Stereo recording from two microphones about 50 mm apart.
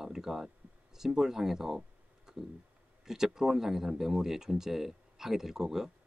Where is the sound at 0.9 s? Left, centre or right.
Centre.